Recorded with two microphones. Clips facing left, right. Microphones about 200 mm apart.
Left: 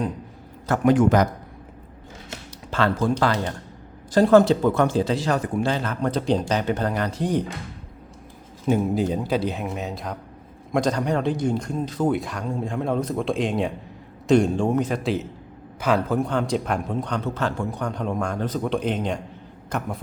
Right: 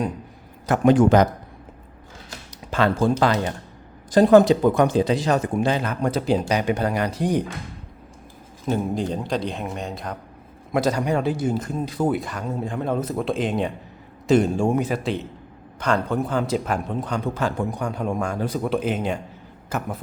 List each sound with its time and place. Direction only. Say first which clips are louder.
0.9 s speech: right 2 dB; 25° right (ahead or behind)
2.9 s a man's voice: right 3 dB; 25° right (ahead or behind)
8.7 s a man's voice: left 2 dB; 5° left (ahead or behind)